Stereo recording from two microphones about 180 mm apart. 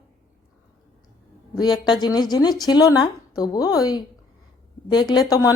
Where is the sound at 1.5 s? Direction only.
20° left (ahead or behind).